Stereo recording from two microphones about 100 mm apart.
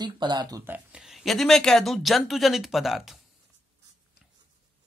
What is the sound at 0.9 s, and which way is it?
Speech, 5° right (ahead or behind).